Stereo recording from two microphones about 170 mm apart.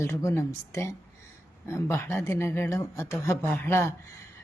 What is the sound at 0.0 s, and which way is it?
Speech, 15° left (ahead or behind).